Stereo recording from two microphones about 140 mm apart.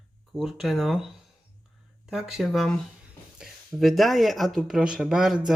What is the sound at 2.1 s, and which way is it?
Speech, 5° right (ahead or behind).